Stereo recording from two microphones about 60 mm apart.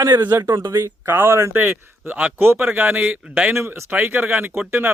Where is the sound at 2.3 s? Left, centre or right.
Right.